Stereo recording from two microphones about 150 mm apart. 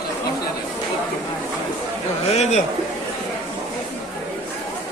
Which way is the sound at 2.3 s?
45° left (ahead or behind).